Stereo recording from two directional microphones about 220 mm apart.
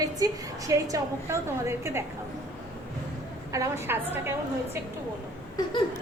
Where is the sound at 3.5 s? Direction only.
10° right (ahead or behind).